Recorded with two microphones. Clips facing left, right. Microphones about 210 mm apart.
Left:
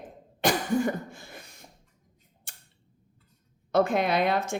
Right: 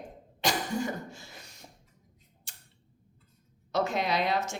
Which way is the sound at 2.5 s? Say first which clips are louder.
Left 3 dB; 55° left (ahead or behind).